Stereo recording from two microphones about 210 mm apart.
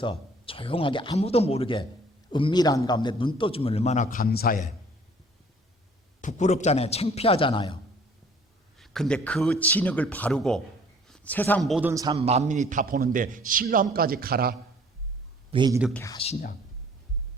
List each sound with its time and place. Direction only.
0.0 s a man's voice: 25° left (ahead or behind); by 4.7 s 40° left (ahead or behind)
6.2 s a man's voice: 35° left (ahead or behind)
8.8 s speech: centre (ahead or behind)
11.9 s a man's voice: 15° right (ahead or behind)
12.1 s a man's voice: 30° right (ahead or behind); by 14.5 s 45° right (ahead or behind)
15.5 s speech: 20° right (ahead or behind)
15.9 s speech: 10° left (ahead or behind)
16.1 s a man's voice: 30° left (ahead or behind)